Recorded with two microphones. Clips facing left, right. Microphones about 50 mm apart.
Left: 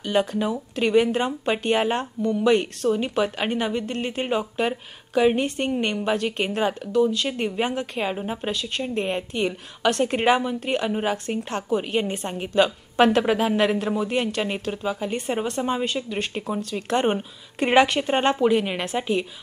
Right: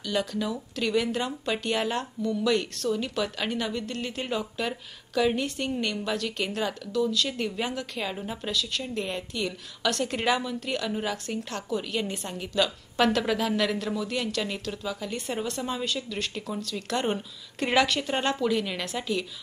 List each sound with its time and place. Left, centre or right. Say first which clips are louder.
0.0 s speech: left 6 dB; left